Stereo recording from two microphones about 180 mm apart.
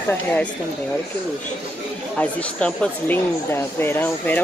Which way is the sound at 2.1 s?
5° left (ahead or behind).